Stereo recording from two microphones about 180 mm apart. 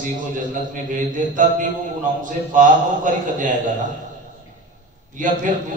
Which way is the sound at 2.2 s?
45° right (ahead or behind).